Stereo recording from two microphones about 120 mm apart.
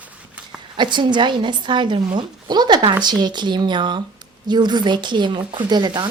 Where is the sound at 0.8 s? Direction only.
40° right (ahead or behind).